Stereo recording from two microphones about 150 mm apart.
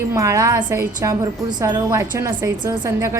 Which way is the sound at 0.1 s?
20° right (ahead or behind).